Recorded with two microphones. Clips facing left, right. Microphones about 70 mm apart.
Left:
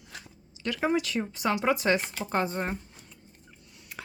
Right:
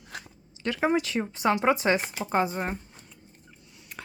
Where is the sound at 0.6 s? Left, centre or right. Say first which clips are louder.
Right 2 dB; right; by 2.7 s centre.